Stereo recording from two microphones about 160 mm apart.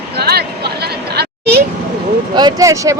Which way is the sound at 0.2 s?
85° right.